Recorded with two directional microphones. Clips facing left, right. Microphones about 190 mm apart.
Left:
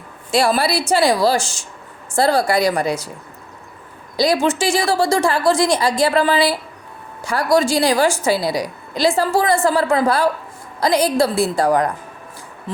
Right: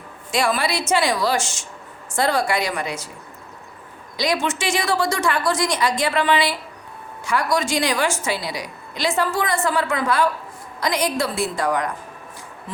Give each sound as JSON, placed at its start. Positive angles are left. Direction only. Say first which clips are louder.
{"t": 0.3, "sound": "a woman's voice", "louder": "left 5 dB", "side_deg": 35}
{"t": 4.2, "sound": "a woman's voice", "louder": "left 6 dB", "side_deg": 35}